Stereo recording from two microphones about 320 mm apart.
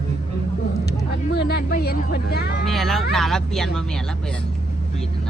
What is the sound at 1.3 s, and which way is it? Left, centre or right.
Speech, left.